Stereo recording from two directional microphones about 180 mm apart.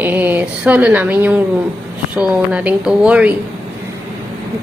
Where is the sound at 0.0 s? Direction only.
10° right (ahead or behind).